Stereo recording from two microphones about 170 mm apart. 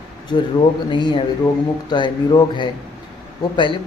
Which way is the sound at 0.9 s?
25° left (ahead or behind).